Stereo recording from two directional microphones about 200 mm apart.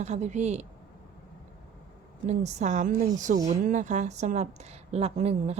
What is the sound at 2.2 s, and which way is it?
A woman's voice, 35° right (ahead or behind).